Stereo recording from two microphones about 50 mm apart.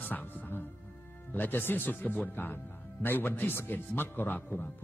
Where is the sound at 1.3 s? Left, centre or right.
Left.